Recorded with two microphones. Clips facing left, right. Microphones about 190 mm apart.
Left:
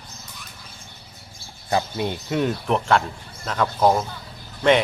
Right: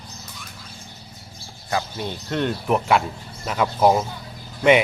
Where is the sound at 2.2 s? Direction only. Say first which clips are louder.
Even; 5° left (ahead or behind).